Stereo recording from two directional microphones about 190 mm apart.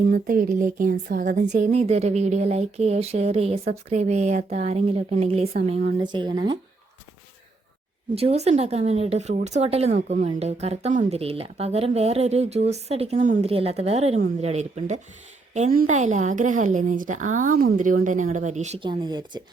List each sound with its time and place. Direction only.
0.1 s speech: 45° right (ahead or behind); by 6.6 s 25° right (ahead or behind)
8.1 s speech: 30° right (ahead or behind)
18.9 s speech: 20° right (ahead or behind)